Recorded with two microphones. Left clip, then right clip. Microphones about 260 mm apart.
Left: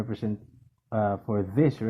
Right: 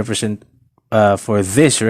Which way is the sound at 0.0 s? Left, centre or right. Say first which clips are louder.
Right 12 dB; right.